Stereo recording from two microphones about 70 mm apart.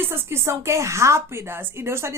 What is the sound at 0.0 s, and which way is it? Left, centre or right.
A woman's voice, right.